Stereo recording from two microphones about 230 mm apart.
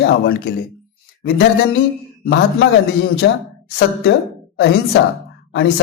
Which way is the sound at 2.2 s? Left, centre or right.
Left.